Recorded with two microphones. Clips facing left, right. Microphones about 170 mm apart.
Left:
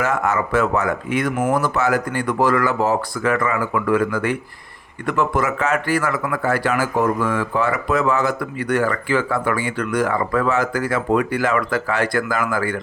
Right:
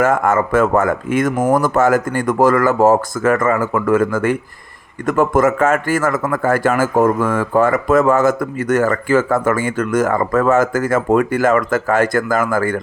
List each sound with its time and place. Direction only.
0.0 s speech: 50° right (ahead or behind)